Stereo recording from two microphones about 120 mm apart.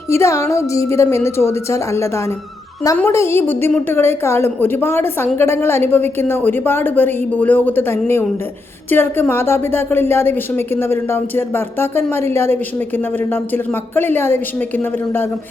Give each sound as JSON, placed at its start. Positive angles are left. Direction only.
{"t": 0.1, "sound": "a woman's voice", "side_deg": 25}